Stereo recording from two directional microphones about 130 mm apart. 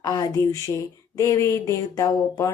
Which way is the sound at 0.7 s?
20° left (ahead or behind).